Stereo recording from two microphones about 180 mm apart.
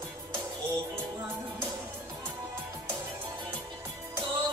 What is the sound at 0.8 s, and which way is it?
Music, 25° right (ahead or behind).